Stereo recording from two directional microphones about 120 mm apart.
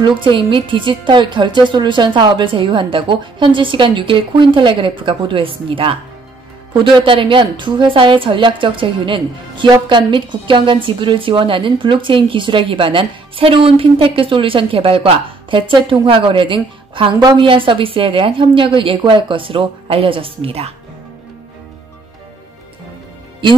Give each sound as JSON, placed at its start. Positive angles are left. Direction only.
{"t": 0.0, "sound": "a woman's voice", "side_deg": -45}